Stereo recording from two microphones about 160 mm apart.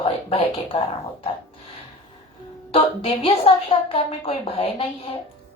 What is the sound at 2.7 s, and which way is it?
A woman's voice, 35° left (ahead or behind).